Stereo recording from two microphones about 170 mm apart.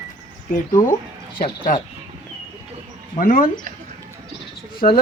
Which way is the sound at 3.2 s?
55° left (ahead or behind).